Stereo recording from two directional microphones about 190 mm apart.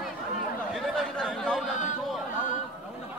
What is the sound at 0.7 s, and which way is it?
Chatter, 5° left (ahead or behind).